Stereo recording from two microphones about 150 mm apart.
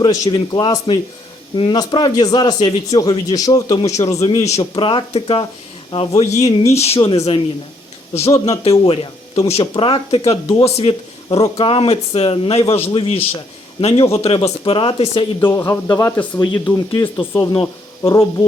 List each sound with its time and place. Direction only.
0.0 s a man's voice: 30° left (ahead or behind)
4.8 s speech: 35° left (ahead or behind)
8.7 s speech: 35° left (ahead or behind)
15.4 s speech: 15° left (ahead or behind)